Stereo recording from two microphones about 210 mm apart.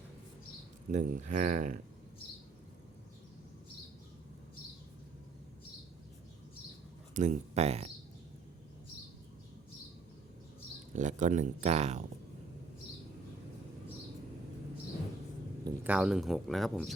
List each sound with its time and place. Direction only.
0.9 s speech: 35° right (ahead or behind)
7.1 s speech: 35° right (ahead or behind)
10.9 s speech: 35° right (ahead or behind)
15.6 s speech: 5° right (ahead or behind)